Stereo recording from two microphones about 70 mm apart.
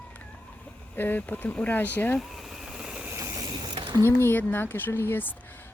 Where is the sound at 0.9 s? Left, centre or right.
Left.